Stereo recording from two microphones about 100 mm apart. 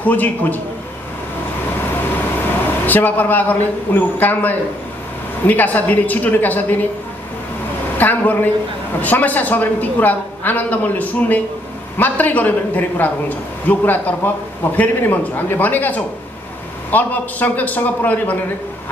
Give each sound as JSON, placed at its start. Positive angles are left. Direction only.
{"t": 0.0, "sound": "a woman's voice", "side_deg": 15}
{"t": 2.9, "sound": "a woman's voice", "side_deg": 15}
{"t": 8.0, "sound": "a woman's voice", "side_deg": 15}